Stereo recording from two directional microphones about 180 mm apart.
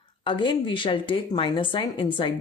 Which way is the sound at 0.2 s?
25° left (ahead or behind).